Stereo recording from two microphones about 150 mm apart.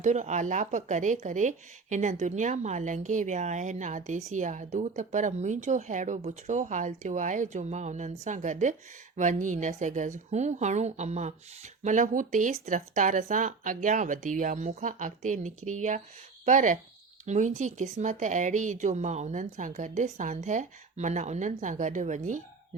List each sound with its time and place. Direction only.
0.0 s speech: 50° right (ahead or behind)